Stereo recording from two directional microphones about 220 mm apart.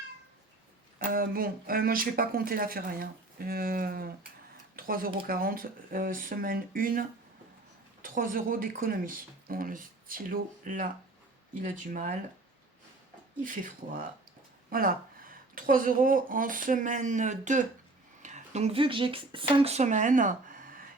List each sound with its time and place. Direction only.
0.9 s speech: 40° right (ahead or behind)
8.0 s speech: 40° right (ahead or behind)
13.4 s speech: 40° right (ahead or behind)